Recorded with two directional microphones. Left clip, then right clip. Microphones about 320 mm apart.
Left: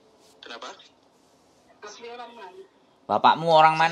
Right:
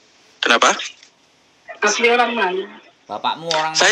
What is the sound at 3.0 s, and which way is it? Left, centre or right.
Speech, left.